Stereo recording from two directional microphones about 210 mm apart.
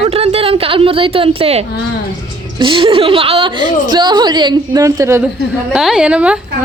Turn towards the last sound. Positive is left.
turn(degrees=-5)  # may be behind; listen again after turning